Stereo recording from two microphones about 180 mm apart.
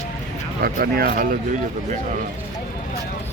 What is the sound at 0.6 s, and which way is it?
Speech, 55° right (ahead or behind).